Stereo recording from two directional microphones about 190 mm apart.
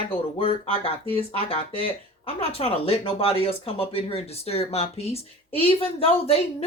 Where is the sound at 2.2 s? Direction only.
30° left (ahead or behind).